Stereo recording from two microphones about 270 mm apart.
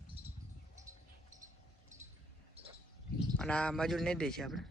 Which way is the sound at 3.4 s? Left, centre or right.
Centre.